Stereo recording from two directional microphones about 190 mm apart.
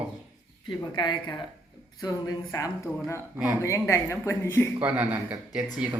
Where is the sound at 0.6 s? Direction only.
20° left (ahead or behind).